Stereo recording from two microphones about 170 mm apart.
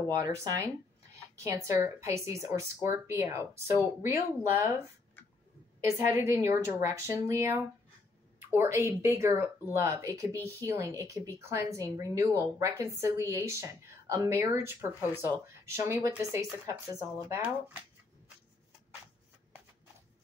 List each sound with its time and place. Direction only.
0.1 s a woman's voice: 20° right (ahead or behind)
5.9 s a woman's voice: 15° right (ahead or behind)